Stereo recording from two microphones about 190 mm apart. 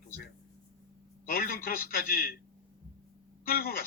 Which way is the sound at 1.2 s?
50° left (ahead or behind).